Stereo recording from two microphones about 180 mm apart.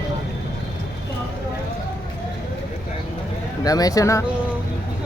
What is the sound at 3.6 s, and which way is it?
Speech, 20° left (ahead or behind).